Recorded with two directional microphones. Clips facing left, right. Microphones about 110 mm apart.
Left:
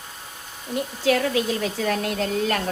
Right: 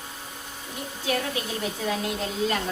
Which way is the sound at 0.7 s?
90° left.